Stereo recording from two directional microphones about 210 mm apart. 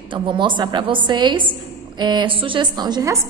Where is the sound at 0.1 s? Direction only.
25° right (ahead or behind).